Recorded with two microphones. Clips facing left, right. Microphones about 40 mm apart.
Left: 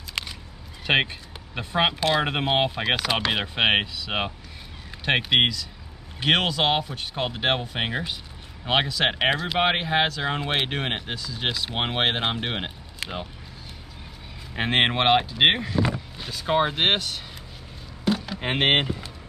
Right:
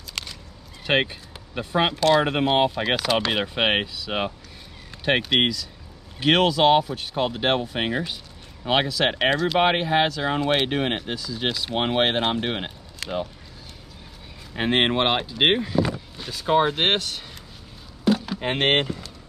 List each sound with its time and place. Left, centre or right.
0.1 s a sound: centre
0.8 s speech: centre
14.5 s speech: centre